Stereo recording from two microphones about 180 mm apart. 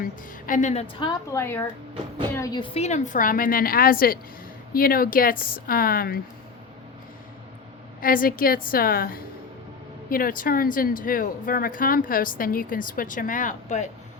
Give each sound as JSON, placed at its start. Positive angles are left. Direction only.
{"t": 0.0, "sound": "a woman's voice", "side_deg": 50}
{"t": 1.0, "sound": "a woman's voice", "side_deg": 15}
{"t": 8.0, "sound": "speech", "side_deg": 50}